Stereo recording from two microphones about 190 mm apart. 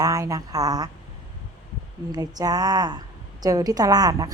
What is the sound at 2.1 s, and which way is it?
A woman's voice, 20° right (ahead or behind).